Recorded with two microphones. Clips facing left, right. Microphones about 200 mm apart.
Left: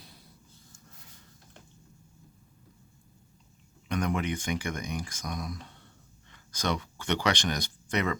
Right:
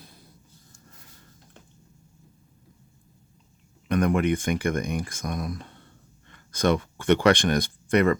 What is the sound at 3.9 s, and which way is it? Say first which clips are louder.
Speech: right 8 dB; 55° right (ahead or behind).